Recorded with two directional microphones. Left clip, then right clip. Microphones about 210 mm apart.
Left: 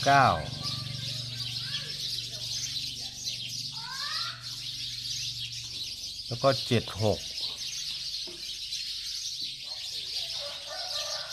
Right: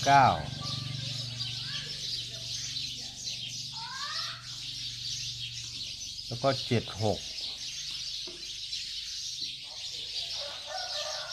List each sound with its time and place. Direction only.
0.0 s speech: 25° left (ahead or behind)
6.4 s speech: 25° left (ahead or behind)